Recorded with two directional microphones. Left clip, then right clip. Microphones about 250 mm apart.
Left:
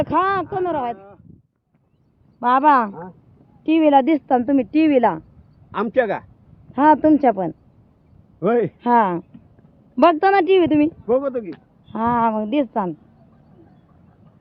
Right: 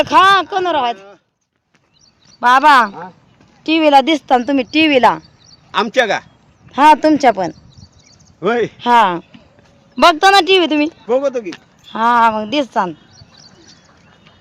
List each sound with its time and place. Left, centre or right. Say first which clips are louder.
0.0 s speech: right 9 dB; centre
2.4 s speech: right 6 dB; centre
5.7 s speech: right 5 dB; centre
8.4 s speech: right 3 dB; left
8.8 s speech: right 9 dB; centre
11.0 s speech: right 4 dB; centre
11.5 s speech: right 7 dB; centre